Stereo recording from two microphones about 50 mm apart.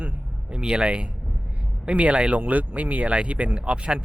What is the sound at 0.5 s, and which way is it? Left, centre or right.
Speech, centre.